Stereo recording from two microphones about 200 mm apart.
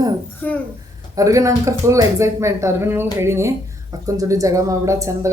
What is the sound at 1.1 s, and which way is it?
Speech, 15° right (ahead or behind).